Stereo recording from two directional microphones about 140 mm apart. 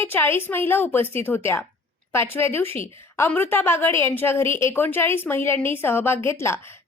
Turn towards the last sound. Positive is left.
turn(degrees=20)  # may be behind; listen again after turning